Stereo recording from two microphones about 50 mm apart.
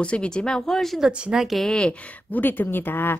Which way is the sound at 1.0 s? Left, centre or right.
Centre.